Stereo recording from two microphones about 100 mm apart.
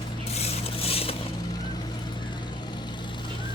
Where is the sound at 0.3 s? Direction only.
90° left.